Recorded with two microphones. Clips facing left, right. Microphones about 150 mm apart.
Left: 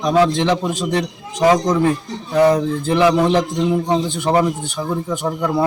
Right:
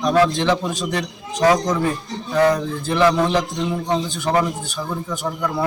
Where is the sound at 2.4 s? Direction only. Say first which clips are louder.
Left 3 dB; 15° left (ahead or behind).